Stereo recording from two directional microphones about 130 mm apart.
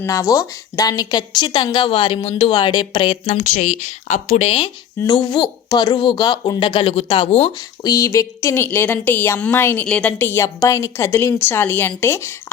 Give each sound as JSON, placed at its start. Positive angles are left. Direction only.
{"t": 0.0, "sound": "speech", "side_deg": 25}
{"t": 3.3, "sound": "speech", "side_deg": 75}
{"t": 4.9, "sound": "speech", "side_deg": 30}
{"t": 7.8, "sound": "a woman's voice", "side_deg": 25}